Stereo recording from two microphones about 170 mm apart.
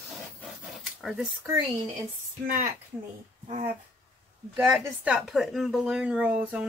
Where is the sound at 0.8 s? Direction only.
Centre (ahead or behind).